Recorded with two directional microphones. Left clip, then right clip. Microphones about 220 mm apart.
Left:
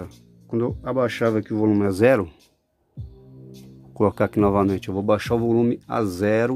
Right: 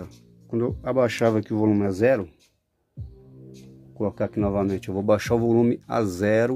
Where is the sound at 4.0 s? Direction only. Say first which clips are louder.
Left 6 dB; 30° left (ahead or behind); by 6.5 s 5° left (ahead or behind).